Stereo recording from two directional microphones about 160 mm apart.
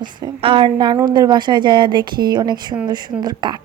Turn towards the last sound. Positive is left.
turn(degrees=-25)  # may be behind; listen again after turning